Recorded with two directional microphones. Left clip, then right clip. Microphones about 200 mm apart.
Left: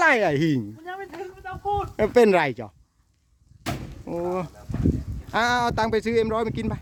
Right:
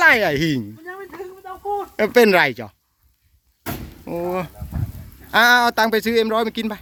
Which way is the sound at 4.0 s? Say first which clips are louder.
Right 4 dB; centre (ahead or behind).